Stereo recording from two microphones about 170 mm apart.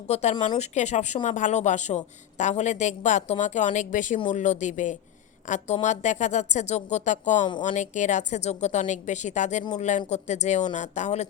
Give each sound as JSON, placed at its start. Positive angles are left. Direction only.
{"t": 0.1, "sound": "speech", "side_deg": 40}